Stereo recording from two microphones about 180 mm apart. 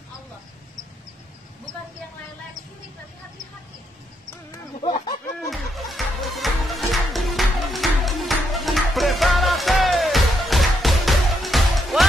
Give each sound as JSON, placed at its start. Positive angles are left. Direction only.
{"t": 4.5, "sound": "fowl", "side_deg": 25}
{"t": 5.5, "sound": "music", "side_deg": 0}